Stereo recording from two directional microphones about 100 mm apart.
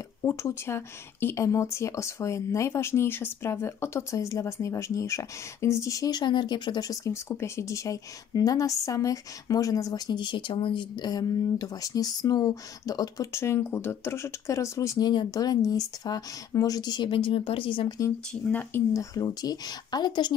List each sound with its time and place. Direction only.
0.2 s speech: 30° left (ahead or behind)
13.3 s speech: 25° left (ahead or behind)
15.0 s speech: 45° left (ahead or behind)
18.3 s speech: 15° left (ahead or behind)
18.9 s speech: 40° left (ahead or behind)